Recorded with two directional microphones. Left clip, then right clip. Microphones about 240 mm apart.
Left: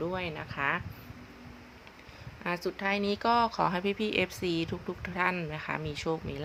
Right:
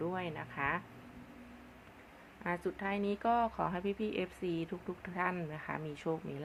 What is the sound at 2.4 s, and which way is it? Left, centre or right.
A woman's voice, centre.